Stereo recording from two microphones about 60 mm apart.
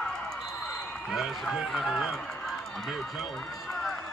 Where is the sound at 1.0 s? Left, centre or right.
Centre.